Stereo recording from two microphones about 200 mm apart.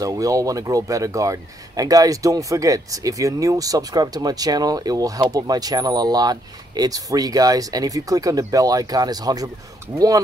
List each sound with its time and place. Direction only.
0.0 s speech: 15° right (ahead or behind)